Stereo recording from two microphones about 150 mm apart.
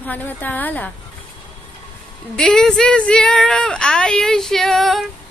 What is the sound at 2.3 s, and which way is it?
A woman's voice, 5° left (ahead or behind).